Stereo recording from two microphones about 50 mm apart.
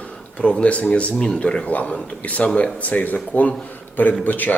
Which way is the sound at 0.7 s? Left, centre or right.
Left.